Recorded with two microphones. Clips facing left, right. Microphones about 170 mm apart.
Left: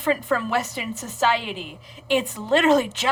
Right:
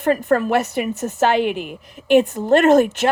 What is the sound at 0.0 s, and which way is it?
A woman's voice, 50° right (ahead or behind).